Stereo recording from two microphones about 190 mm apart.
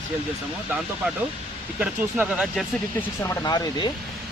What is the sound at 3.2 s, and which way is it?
Speech, 20° left (ahead or behind).